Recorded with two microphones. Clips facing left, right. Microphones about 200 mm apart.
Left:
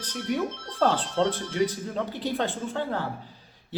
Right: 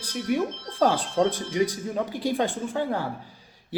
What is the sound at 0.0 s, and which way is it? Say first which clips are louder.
Speech: right 2 dB; 10° right (ahead or behind).